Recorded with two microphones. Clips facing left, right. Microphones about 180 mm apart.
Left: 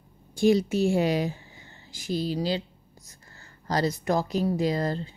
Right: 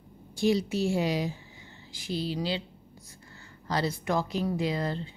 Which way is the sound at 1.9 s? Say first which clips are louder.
Left 4 dB; 45° left (ahead or behind).